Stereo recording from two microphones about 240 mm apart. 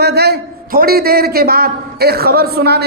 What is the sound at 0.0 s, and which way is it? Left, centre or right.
A man's voice, right.